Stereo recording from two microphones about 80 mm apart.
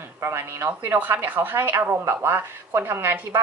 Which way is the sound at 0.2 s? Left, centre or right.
Right.